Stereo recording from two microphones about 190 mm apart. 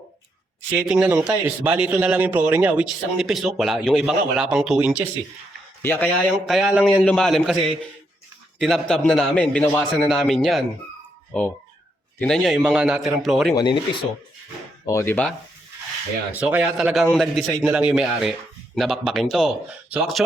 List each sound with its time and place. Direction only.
0.7 s a man's voice: 5° right (ahead or behind)
5.8 s a man's voice: 10° left (ahead or behind)
8.5 s a man's voice: centre (ahead or behind)
13.6 s speech: 25° left (ahead or behind)
14.8 s speech: 15° left (ahead or behind)
16.3 s a man's voice: 10° right (ahead or behind)